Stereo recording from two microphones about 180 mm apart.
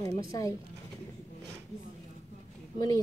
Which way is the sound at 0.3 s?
20° left (ahead or behind).